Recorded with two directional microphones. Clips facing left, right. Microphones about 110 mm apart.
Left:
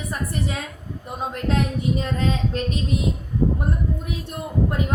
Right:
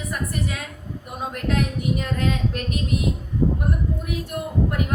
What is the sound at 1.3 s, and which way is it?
Speech, 30° left (ahead or behind).